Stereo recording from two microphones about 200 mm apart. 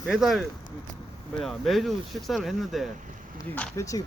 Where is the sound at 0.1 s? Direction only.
Centre (ahead or behind).